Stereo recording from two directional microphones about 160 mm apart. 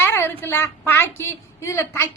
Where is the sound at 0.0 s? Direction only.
15° left (ahead or behind).